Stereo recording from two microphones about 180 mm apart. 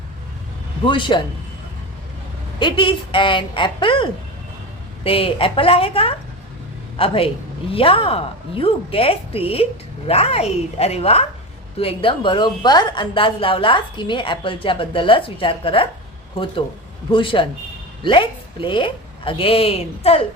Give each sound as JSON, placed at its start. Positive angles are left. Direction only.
{"t": 0.9, "sound": "a woman's voice", "side_deg": 25}
{"t": 2.6, "sound": "a woman's voice", "side_deg": 25}